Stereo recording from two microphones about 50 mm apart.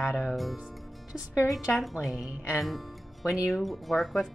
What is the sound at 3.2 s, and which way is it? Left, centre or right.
Speech, left.